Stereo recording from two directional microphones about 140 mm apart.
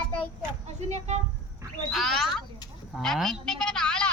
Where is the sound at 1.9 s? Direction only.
Centre (ahead or behind).